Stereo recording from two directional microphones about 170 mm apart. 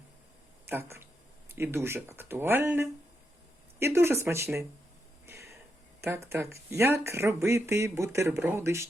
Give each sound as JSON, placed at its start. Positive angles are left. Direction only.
{"t": 0.7, "sound": "speech", "side_deg": -15}
{"t": 5.2, "sound": "a sound", "side_deg": -15}
{"t": 6.0, "sound": "speech", "side_deg": -15}